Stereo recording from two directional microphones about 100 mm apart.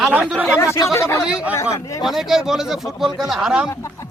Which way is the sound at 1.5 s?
30° left (ahead or behind).